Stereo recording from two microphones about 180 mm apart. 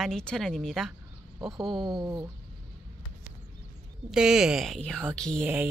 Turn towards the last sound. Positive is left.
turn(degrees=5)  # may be behind; listen again after turning